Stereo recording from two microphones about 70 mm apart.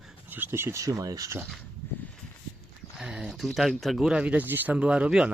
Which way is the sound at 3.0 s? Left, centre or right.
Centre.